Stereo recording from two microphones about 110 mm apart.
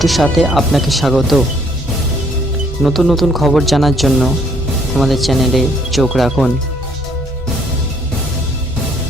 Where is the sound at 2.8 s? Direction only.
Centre (ahead or behind).